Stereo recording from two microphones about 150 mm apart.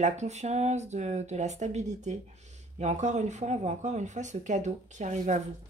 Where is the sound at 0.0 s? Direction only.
50° right (ahead or behind).